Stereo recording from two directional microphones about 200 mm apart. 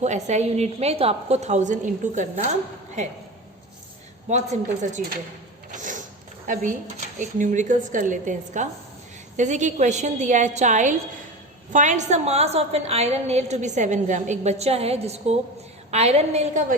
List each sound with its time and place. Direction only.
0.0 s a woman's voice: 35° right (ahead or behind)
4.3 s a woman's voice: 35° right (ahead or behind)
5.7 s a sound: 40° right (ahead or behind)
6.5 s a woman's voice: 40° right (ahead or behind)